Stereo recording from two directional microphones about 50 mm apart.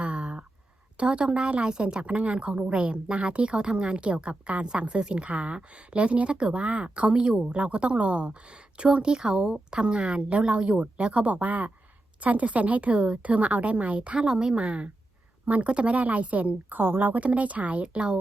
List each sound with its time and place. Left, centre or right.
0.0 s a sound: right
0.9 s a woman's voice: right
17.2 s a woman's voice: right
17.8 s a woman's voice: centre